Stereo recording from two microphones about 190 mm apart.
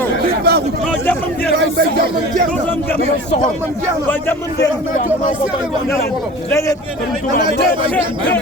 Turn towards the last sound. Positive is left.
turn(degrees=15)  # may be behind; listen again after turning